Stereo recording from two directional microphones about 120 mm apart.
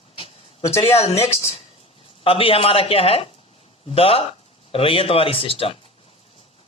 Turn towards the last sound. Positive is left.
turn(degrees=50)  # may be behind; listen again after turning